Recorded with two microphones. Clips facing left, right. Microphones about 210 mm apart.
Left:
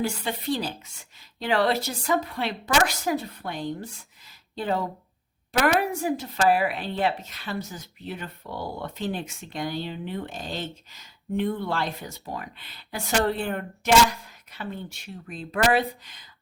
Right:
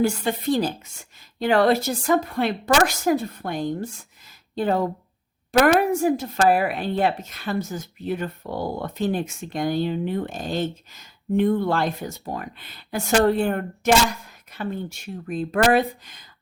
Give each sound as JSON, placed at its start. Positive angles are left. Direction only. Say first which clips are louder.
{"t": 0.0, "sound": "speech", "louder": "right 6 dB", "side_deg": -45}